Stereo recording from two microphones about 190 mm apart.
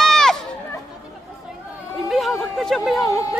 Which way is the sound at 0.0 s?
Centre (ahead or behind).